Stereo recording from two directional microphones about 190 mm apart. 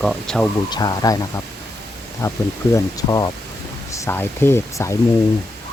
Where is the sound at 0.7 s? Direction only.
20° left (ahead or behind).